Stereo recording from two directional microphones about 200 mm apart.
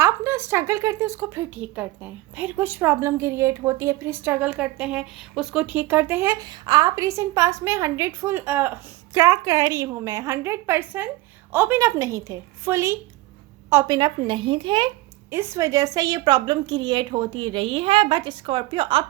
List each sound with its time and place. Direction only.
0.0 s a woman's voice: 10° right (ahead or behind)
15.3 s a woman's voice: 10° right (ahead or behind)